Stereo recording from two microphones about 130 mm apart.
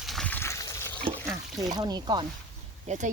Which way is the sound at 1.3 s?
30° right (ahead or behind).